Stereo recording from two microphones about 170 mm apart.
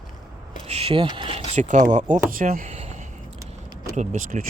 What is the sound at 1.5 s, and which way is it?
Speech, 45° right (ahead or behind).